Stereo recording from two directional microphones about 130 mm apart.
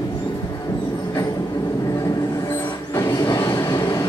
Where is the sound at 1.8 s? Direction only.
25° left (ahead or behind).